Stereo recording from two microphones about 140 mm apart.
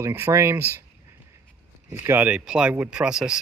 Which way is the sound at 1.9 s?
15° right (ahead or behind).